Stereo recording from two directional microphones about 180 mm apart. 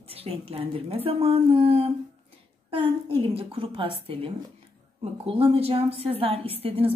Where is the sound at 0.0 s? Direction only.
35° right (ahead or behind).